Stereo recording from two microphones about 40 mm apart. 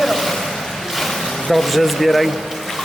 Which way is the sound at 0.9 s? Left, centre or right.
Centre.